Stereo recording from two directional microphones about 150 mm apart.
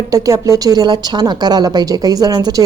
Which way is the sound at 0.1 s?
25° right (ahead or behind).